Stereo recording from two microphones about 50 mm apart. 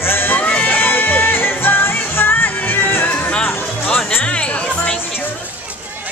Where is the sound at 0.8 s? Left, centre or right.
Left.